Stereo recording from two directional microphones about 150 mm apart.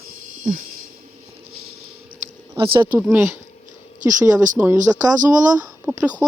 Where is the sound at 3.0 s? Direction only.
15° right (ahead or behind).